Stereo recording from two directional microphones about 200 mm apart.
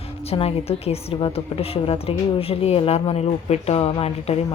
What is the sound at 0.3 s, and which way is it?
A woman's voice, 30° left (ahead or behind).